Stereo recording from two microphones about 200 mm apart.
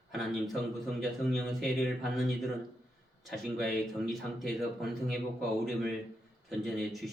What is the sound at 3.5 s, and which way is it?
Speech, centre (ahead or behind).